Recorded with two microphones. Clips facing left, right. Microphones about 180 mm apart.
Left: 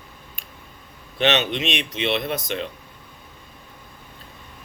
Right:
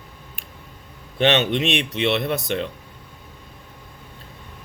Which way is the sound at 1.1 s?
50° right (ahead or behind).